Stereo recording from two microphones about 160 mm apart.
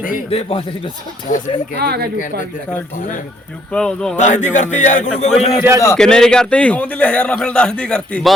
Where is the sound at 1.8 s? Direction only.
80° right.